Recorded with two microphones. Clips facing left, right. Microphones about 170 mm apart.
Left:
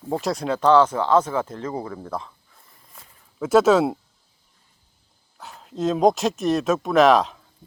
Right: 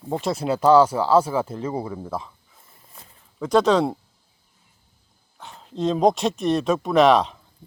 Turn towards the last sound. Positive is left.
turn(degrees=0)  # may be behind; listen again after turning